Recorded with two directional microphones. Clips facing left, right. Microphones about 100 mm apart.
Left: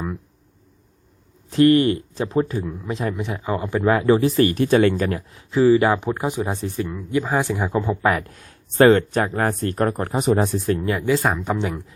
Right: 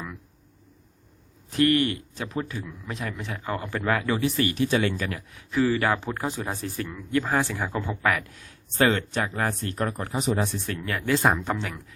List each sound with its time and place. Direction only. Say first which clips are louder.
1.5 s a man's voice: left 7 dB; 30° left (ahead or behind)
4.4 s speech: left 7 dB; 45° left (ahead or behind); by 8.2 s 20° left (ahead or behind)
8.3 s speech: left 3 dB; 45° left (ahead or behind)
10.7 s speech: left 9 dB; 30° left (ahead or behind)
11.1 s speech: left 1 dB; centre (ahead or behind)
11.4 s speech: left 6 dB; 20° left (ahead or behind)